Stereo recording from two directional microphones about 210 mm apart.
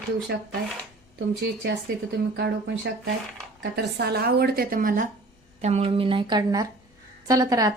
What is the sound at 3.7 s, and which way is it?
A woman's voice, 50° right (ahead or behind).